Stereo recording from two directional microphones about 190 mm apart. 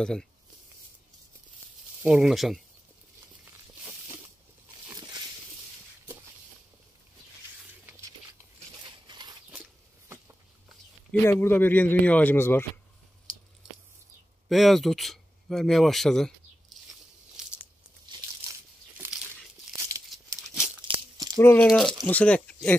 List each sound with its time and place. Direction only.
0.0 s speech: 5° left (ahead or behind)
2.0 s speech: 5° right (ahead or behind)
8.8 s a sound: 25° right (ahead or behind)
9.5 s a sound: 10° right (ahead or behind)
11.1 s speech: 10° left (ahead or behind)
14.5 s speech: centre (ahead or behind)
17.4 s a sound: 5° right (ahead or behind)
18.0 s crumpling: 25° right (ahead or behind)
20.1 s crumpling: centre (ahead or behind)
20.8 s tearing: 25° right (ahead or behind)
21.4 s speech: 10° left (ahead or behind)
21.6 s speech: centre (ahead or behind)